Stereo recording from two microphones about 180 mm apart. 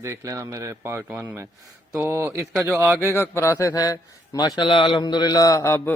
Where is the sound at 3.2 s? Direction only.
15° left (ahead or behind).